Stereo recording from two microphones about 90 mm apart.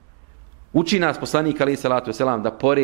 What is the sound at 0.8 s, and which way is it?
A man's voice, 15° right (ahead or behind).